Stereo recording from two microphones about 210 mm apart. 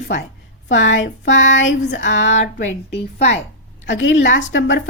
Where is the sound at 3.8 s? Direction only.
60° left (ahead or behind).